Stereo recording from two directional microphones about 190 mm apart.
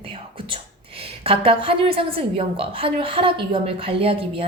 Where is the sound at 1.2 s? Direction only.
30° right (ahead or behind).